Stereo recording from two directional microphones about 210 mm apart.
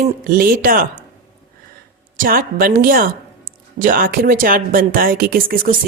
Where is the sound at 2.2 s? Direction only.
45° right (ahead or behind).